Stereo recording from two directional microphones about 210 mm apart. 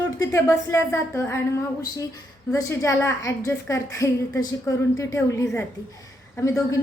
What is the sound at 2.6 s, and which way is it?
A woman's voice, 15° left (ahead or behind).